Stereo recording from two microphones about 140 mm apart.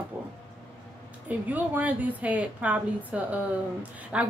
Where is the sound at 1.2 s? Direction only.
10° right (ahead or behind).